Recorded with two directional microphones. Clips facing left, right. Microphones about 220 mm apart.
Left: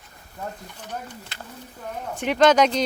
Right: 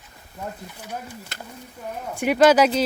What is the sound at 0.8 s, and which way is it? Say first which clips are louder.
Speech: even; 10° right (ahead or behind).